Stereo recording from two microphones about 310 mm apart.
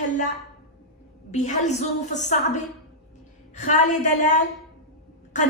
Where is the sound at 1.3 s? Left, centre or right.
Left.